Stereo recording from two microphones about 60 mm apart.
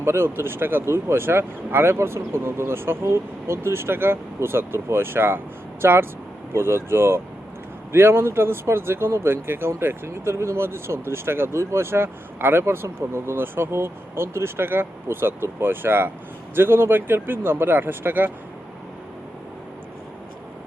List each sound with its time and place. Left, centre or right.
0.0 s speech: right